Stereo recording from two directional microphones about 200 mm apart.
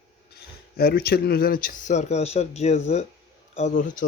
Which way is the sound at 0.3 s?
50° left (ahead or behind).